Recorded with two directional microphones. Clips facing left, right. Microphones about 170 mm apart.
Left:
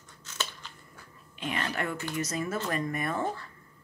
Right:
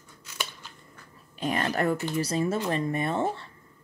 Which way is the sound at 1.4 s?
40° right (ahead or behind).